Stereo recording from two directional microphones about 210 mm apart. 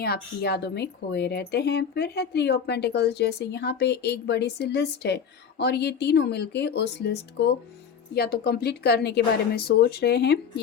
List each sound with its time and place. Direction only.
0.0 s speech: 50° left (ahead or behind)